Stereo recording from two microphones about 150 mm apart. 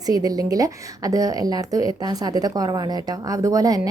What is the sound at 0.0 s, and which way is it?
A woman's voice, 25° right (ahead or behind).